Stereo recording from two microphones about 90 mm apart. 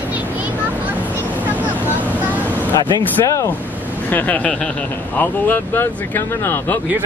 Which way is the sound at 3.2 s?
35° left (ahead or behind).